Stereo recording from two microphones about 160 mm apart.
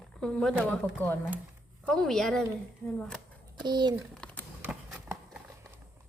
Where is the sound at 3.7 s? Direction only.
25° right (ahead or behind).